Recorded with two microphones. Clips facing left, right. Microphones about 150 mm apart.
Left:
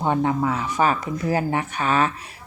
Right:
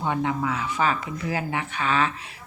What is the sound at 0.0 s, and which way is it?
A woman's voice, 40° left (ahead or behind).